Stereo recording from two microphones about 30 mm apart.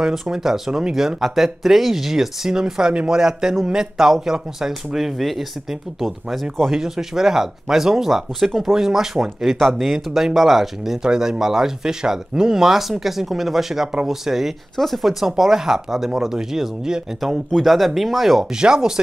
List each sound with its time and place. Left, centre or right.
0.0 s a man's voice: centre
6.7 s speech: centre
11.0 s speech: right
14.8 s speech: centre
15.0 s speech: centre
17.6 s speech: centre
18.6 s a man's voice: right